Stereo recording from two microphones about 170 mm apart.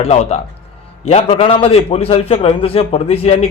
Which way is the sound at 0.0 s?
40° left (ahead or behind).